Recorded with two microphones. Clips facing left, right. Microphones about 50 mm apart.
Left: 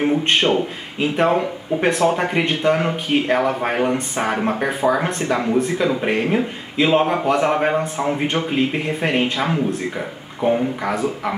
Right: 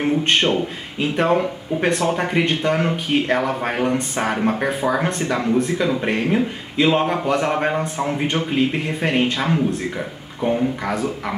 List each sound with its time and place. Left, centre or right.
0.0 s speech: centre